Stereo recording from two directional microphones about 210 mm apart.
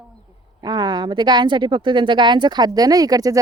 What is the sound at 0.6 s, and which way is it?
Speech, 20° right (ahead or behind).